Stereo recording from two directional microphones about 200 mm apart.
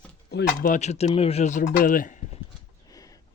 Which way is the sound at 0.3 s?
60° left (ahead or behind).